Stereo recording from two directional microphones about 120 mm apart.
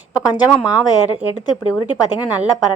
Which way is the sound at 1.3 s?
35° left (ahead or behind).